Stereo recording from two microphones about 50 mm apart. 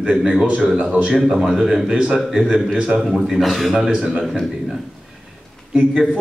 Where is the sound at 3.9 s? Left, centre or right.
Centre.